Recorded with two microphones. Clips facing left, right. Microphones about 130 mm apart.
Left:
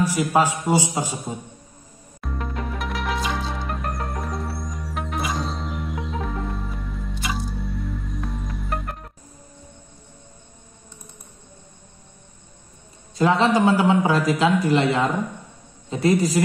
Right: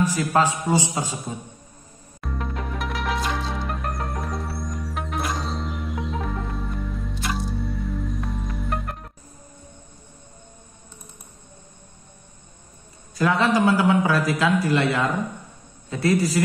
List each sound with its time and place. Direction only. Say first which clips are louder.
0.0 s a man's voice: left 1 dB; 15° left (ahead or behind)
2.2 s music: left 1 dB; centre (ahead or behind)
13.1 s a man's voice: left 2 dB; 25° left (ahead or behind)